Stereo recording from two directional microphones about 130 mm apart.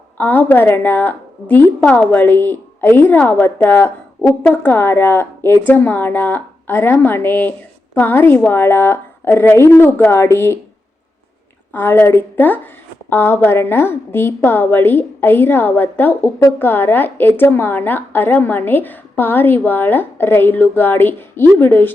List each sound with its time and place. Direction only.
0.2 s a woman's voice: 15° left (ahead or behind)
11.7 s a woman's voice: 15° left (ahead or behind)